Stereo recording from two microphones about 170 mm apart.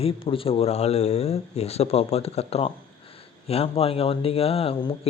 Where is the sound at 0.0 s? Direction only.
30° left (ahead or behind).